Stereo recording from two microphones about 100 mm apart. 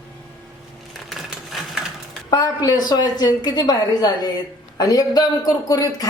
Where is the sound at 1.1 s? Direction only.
Centre (ahead or behind).